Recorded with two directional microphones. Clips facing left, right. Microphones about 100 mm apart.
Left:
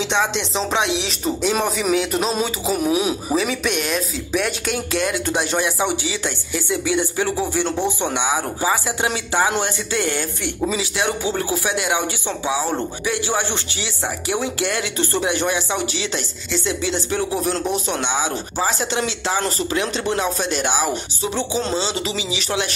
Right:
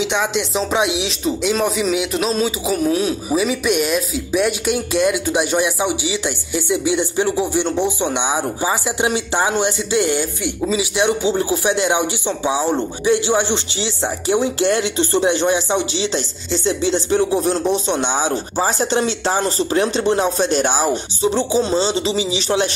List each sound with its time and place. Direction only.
0.0 s speech: 5° right (ahead or behind)
2.0 s speech: 5° right (ahead or behind)
2.8 s speech: 15° left (ahead or behind)
3.3 s speech: 10° right (ahead or behind); by 22.7 s 30° right (ahead or behind)